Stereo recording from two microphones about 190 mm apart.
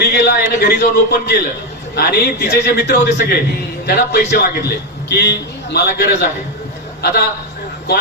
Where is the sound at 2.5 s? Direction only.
55° left (ahead or behind).